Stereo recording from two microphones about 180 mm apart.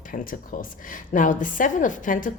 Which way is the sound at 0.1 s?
50° left (ahead or behind).